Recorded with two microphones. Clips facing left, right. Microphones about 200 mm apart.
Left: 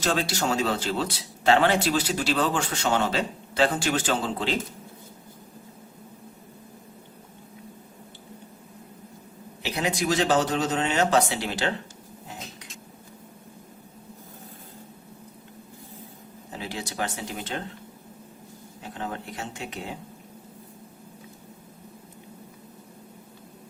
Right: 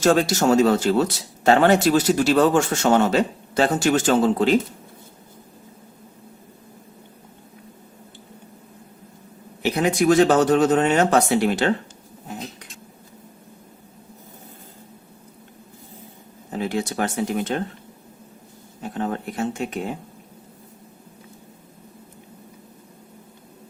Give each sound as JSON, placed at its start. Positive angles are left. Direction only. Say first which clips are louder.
{"t": 0.0, "sound": "speech", "louder": "right 8 dB", "side_deg": -45}
{"t": 9.6, "sound": "speech", "louder": "right 8 dB", "side_deg": -50}
{"t": 16.5, "sound": "speech", "louder": "right 10 dB", "side_deg": -50}
{"t": 18.8, "sound": "speech", "louder": "right 8 dB", "side_deg": -50}